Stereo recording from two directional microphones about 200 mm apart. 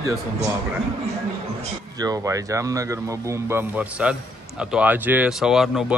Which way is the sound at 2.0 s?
15° right (ahead or behind).